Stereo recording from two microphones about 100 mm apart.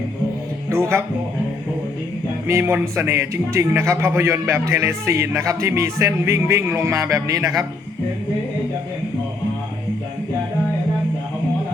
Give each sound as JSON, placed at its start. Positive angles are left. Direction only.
{"t": 0.7, "sound": "speech", "side_deg": -25}
{"t": 2.5, "sound": "a man's voice", "side_deg": -25}